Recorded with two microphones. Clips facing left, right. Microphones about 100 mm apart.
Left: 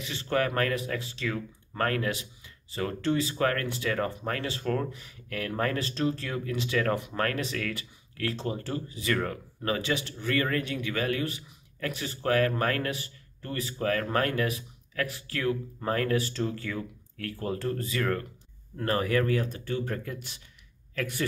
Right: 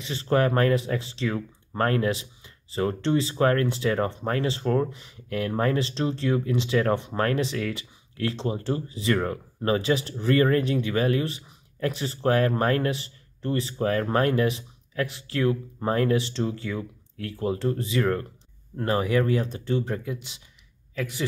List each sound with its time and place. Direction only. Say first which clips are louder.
0.0 s speech: right 5 dB; 30° right (ahead or behind); by 21.3 s 10° right (ahead or behind)